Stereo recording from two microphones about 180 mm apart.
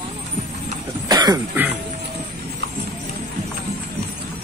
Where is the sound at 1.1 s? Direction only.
20° right (ahead or behind).